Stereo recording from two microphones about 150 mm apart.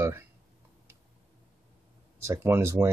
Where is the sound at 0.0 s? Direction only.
15° right (ahead or behind).